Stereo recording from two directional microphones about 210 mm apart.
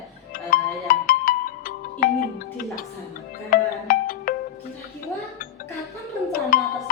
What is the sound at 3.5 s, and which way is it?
Music, 45° left (ahead or behind).